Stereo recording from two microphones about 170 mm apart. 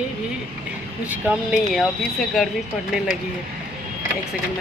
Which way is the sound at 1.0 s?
10° right (ahead or behind).